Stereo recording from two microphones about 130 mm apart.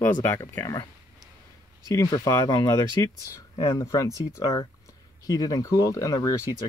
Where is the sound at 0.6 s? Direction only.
30° left (ahead or behind).